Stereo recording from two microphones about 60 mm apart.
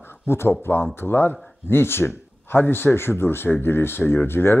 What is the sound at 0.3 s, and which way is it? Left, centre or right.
Speech, left.